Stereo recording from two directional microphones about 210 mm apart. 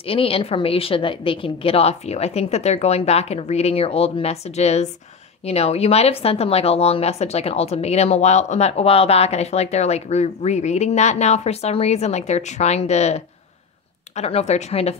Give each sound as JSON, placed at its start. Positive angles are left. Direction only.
{"t": 0.0, "sound": "a woman's voice", "side_deg": 25}